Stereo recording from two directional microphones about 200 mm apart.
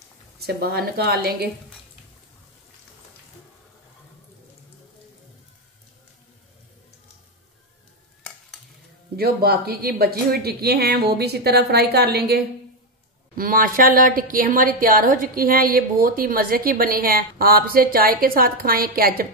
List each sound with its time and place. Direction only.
0.4 s a woman's voice: 50° right (ahead or behind)
9.1 s a woman's voice: 50° right (ahead or behind)